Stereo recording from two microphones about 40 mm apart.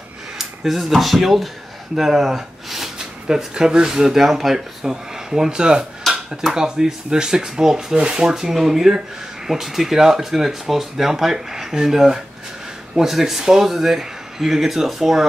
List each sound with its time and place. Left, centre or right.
0.4 s speech: centre